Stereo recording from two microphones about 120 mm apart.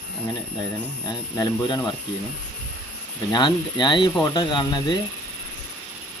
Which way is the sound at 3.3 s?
40° left (ahead or behind).